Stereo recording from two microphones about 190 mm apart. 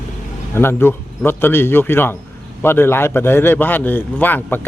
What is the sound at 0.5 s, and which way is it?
A man's voice, 10° left (ahead or behind).